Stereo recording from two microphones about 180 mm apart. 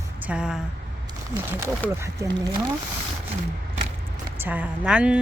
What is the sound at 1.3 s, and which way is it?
Speech, 15° right (ahead or behind).